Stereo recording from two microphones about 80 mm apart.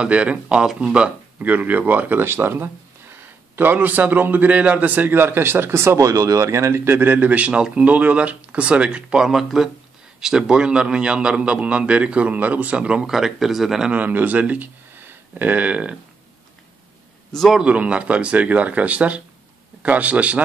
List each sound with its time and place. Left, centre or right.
0.0 s a man's voice: centre
13.9 s speech: centre
17.3 s a man's voice: centre
17.6 s a man's voice: centre